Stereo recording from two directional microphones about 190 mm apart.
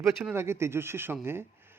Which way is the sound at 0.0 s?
10° right (ahead or behind).